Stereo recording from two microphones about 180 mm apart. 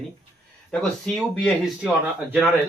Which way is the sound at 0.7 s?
5° left (ahead or behind).